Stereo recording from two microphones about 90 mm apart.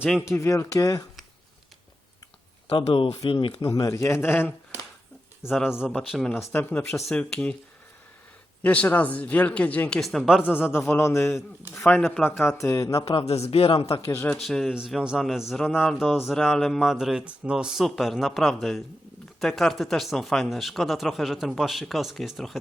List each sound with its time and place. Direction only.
0.3 s speech: 35° left (ahead or behind)
2.6 s speech: 75° left (ahead or behind)
3.6 s speech: 45° left (ahead or behind); by 4.5 s 25° left (ahead or behind)
5.4 s speech: 5° right (ahead or behind)
6.5 s a man's voice: 20° left (ahead or behind)
7.1 s speech: 10° left (ahead or behind)
8.6 s speech: 15° left (ahead or behind)
10.0 s speech: centre (ahead or behind)
10.7 s a man's voice: 25° left (ahead or behind)
12.5 s speech: 30° left (ahead or behind)
13.1 s speech: 90° left
14.4 s speech: centre (ahead or behind)